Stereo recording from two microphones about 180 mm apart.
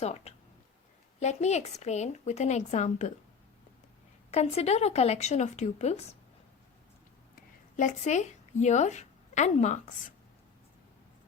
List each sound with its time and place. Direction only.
0.0 s speech: 35° left (ahead or behind)
4.3 s speech: 35° left (ahead or behind)
7.8 s a woman's voice: 40° left (ahead or behind)